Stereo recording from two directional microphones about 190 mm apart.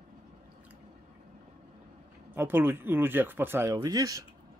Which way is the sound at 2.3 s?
10° right (ahead or behind).